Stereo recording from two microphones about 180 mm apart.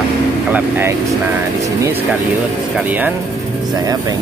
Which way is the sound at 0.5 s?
10° right (ahead or behind).